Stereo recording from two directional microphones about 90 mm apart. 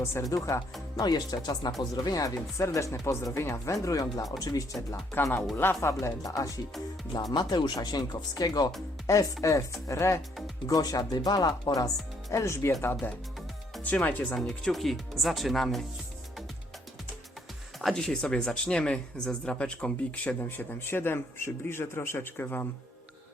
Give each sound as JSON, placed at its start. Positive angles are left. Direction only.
{"t": 0.0, "sound": "speech", "side_deg": 35}
{"t": 1.0, "sound": "speech", "side_deg": 50}
{"t": 5.5, "sound": "speech", "side_deg": 25}
{"t": 7.1, "sound": "speech", "side_deg": 50}
{"t": 9.1, "sound": "speech", "side_deg": 35}
{"t": 12.3, "sound": "speech", "side_deg": 30}
{"t": 14.3, "sound": "speech", "side_deg": 5}
{"t": 17.7, "sound": "speech", "side_deg": 0}